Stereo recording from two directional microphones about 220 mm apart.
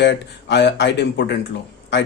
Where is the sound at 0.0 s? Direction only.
50° left (ahead or behind).